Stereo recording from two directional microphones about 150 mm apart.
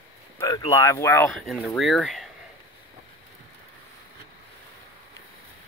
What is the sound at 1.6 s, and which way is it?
Speech, centre (ahead or behind).